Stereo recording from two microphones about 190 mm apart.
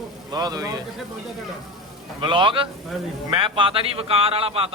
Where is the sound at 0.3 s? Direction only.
20° right (ahead or behind).